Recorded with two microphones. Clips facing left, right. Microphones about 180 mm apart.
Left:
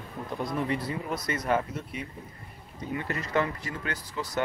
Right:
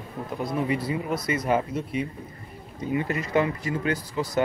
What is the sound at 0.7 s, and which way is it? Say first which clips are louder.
Speech: right 4 dB; 10° right (ahead or behind).